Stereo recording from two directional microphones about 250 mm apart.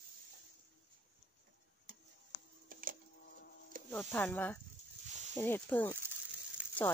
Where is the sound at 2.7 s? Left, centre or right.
Right.